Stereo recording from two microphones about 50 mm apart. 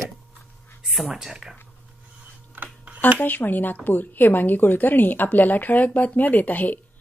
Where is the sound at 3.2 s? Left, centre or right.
Left.